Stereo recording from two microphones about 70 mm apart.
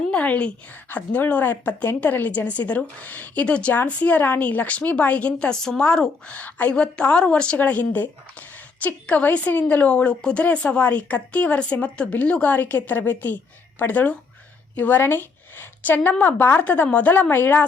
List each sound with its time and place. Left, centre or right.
0.1 s a woman's voice: centre